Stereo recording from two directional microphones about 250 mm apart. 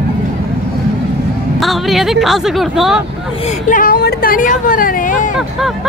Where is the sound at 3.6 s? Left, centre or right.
Left.